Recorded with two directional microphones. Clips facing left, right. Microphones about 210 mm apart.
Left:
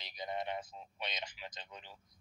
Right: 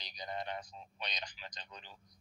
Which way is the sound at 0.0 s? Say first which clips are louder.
Left 2 dB; 25° left (ahead or behind).